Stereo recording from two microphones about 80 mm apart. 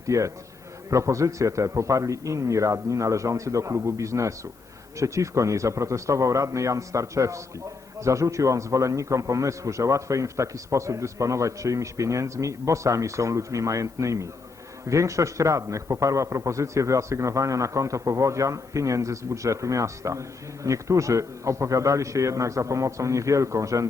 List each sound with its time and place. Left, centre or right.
0.1 s a man's voice: right